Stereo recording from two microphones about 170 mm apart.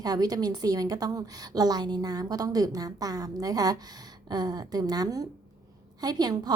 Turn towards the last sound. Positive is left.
turn(degrees=-25)  # may be behind; listen again after turning